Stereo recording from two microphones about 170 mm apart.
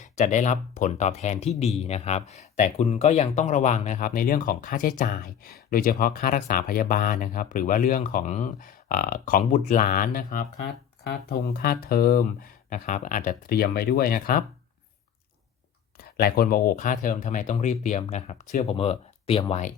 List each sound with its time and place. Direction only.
0.0 s speech: 45° left (ahead or behind)
11.4 s speech: 65° left (ahead or behind)
16.0 s speech: 65° left (ahead or behind); by 19.7 s 40° left (ahead or behind)